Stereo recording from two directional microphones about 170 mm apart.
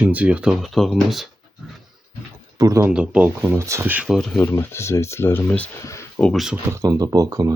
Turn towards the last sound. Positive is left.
turn(degrees=-20)  # may be behind; listen again after turning